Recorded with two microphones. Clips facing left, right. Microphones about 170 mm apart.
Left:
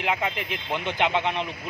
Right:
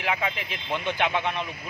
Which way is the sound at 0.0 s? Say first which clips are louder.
Left 1 dB; 15° left (ahead or behind).